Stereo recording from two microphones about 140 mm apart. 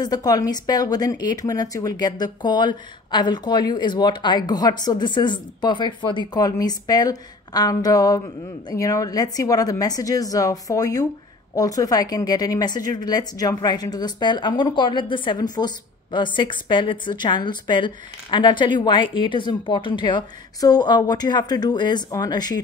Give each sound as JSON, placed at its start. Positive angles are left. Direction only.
{"t": 0.0, "sound": "a woman's voice", "side_deg": 25}